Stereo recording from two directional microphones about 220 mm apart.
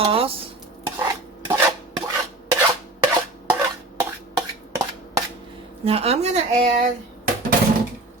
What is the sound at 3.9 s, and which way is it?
Cough, 15° right (ahead or behind).